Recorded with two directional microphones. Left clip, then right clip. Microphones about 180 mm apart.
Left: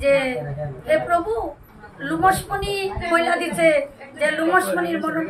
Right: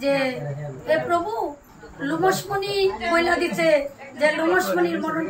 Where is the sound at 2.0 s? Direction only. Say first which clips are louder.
Left 3 dB; 20° left (ahead or behind).